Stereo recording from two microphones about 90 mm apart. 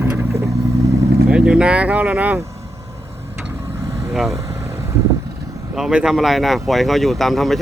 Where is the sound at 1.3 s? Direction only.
10° right (ahead or behind).